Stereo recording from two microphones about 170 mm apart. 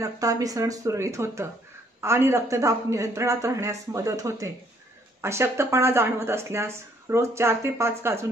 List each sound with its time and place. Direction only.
0.0 s speech: 20° right (ahead or behind)